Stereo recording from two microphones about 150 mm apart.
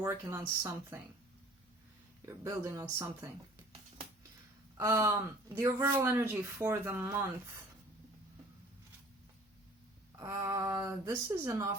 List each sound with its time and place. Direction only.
0.0 s speech: 15° right (ahead or behind)
2.2 s speech: 20° right (ahead or behind)
4.8 s speech: 20° right (ahead or behind)
10.2 s speech: 20° right (ahead or behind)